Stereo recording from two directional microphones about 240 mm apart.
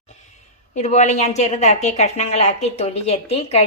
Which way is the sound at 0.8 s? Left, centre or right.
Left.